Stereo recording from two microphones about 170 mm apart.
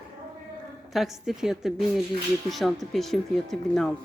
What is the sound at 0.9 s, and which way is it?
Speech, centre (ahead or behind).